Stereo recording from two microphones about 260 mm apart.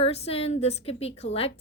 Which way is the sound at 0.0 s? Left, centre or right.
Left.